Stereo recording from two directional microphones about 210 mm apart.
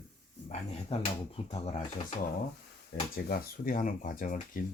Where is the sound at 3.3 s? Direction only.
45° left (ahead or behind).